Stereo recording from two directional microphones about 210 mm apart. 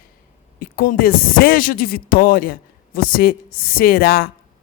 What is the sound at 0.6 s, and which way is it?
Speech, 40° left (ahead or behind).